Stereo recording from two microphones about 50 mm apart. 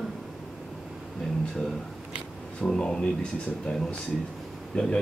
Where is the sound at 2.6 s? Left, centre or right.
Centre.